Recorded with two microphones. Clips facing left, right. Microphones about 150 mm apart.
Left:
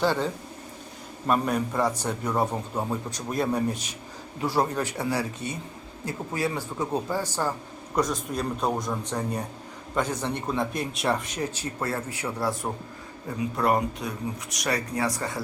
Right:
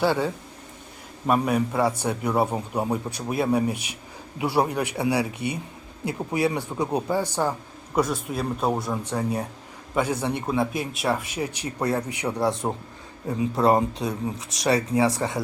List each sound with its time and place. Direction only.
0.0 s speech: 10° right (ahead or behind)
1.3 s speech: 10° right (ahead or behind); by 15.4 s 25° right (ahead or behind)